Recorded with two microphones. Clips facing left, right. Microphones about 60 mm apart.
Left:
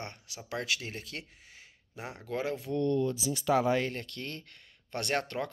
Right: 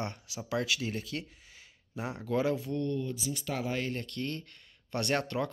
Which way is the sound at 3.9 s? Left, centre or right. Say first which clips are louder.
Right 3 dB; left.